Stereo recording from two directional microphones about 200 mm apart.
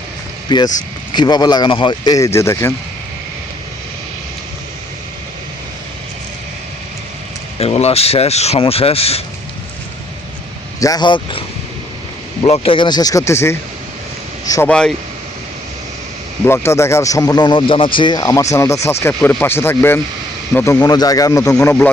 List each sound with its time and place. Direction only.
0.4 s speech: 20° left (ahead or behind)
7.6 s speech: 30° left (ahead or behind)
10.8 s speech: 20° left (ahead or behind)
12.5 s speech: 25° left (ahead or behind)
14.7 s speech: 5° left (ahead or behind)
16.5 s speech: 15° left (ahead or behind)